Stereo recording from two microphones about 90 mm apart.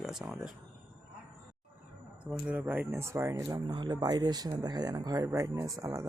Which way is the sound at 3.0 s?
30° right (ahead or behind).